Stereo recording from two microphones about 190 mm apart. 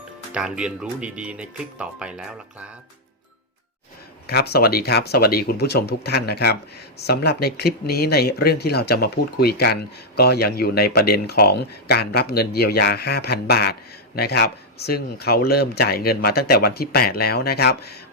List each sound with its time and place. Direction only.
0.3 s speech: 5° right (ahead or behind)
4.3 s speech: 55° left (ahead or behind)